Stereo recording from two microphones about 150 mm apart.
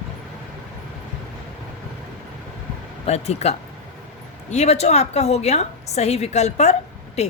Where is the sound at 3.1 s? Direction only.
45° left (ahead or behind).